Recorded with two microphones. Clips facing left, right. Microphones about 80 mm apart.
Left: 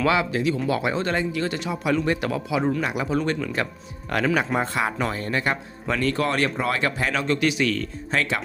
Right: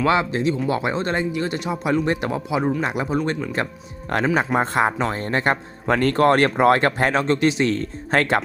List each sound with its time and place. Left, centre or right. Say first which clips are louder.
0.0 s speech: right 2 dB; right
2.6 s speech: right 1 dB; centre
2.8 s speech: right 2 dB; right
4.1 s speech: right 2 dB; right
8.1 s speech: right 6 dB; right